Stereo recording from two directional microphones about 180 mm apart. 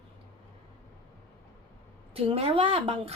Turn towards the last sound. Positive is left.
turn(degrees=-30)  # may be behind; listen again after turning